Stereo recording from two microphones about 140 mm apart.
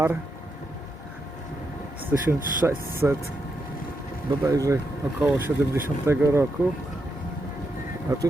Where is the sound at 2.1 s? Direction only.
15° right (ahead or behind).